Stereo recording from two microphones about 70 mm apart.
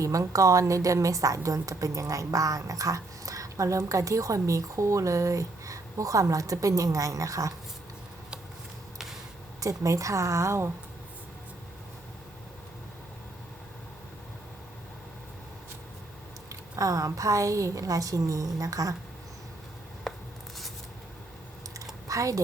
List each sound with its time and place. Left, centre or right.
0.0 s a woman's voice: right
9.6 s a woman's voice: right
16.7 s a woman's voice: right
22.0 s a sound: right